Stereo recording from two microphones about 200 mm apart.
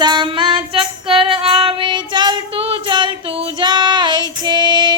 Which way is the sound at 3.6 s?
20° right (ahead or behind).